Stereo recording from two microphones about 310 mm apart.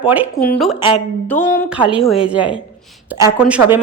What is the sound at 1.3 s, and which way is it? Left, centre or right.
Speech, left.